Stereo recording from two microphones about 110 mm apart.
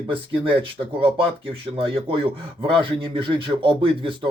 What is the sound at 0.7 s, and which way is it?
Speech, 55° right (ahead or behind).